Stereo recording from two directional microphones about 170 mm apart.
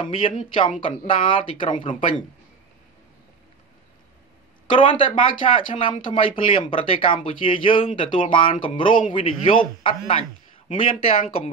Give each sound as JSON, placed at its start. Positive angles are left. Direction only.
{"t": 0.0, "sound": "speech", "side_deg": 30}
{"t": 4.7, "sound": "speech", "side_deg": 30}